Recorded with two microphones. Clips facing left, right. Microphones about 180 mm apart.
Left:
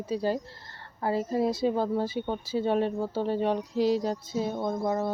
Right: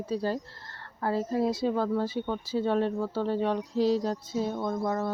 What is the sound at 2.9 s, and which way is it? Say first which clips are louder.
Speech: even; 20° left (ahead or behind).